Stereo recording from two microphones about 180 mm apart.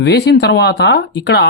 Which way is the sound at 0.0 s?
65° left (ahead or behind).